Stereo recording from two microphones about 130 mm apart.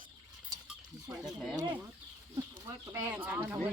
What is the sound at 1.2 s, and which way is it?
Speech, 5° right (ahead or behind).